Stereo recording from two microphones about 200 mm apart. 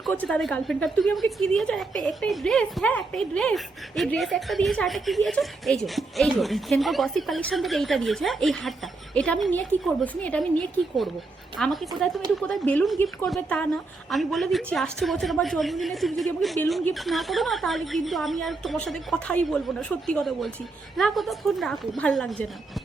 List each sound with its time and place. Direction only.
0.0 s a woman's voice: 5° left (ahead or behind)
11.5 s a woman's voice: centre (ahead or behind)